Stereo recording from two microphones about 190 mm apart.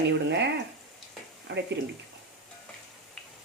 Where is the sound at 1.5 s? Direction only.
70° right (ahead or behind).